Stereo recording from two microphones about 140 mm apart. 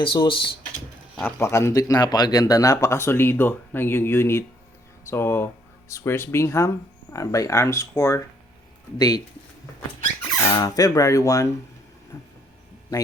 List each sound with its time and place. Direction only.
0.0 s speech: 35° left (ahead or behind)
1.2 s speech: 20° left (ahead or behind)
10.6 s speech: 25° left (ahead or behind)
12.1 s vehicle: 20° left (ahead or behind)